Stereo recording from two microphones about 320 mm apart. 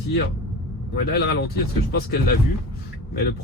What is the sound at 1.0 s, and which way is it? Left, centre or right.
Speech, left.